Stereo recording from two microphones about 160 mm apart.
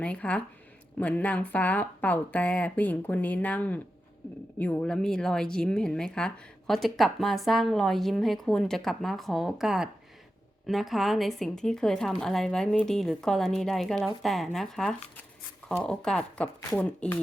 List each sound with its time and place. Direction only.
0.0 s a woman's voice: 10° left (ahead or behind)